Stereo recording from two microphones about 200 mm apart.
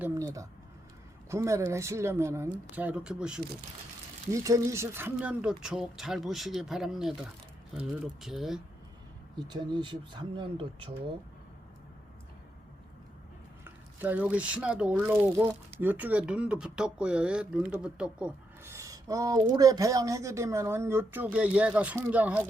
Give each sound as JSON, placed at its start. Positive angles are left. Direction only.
{"t": 0.0, "sound": "a sound", "side_deg": -15}
{"t": 1.3, "sound": "speech", "side_deg": -15}
{"t": 4.3, "sound": "speech", "side_deg": -15}
{"t": 9.3, "sound": "speech", "side_deg": -20}
{"t": 13.7, "sound": "speech", "side_deg": -10}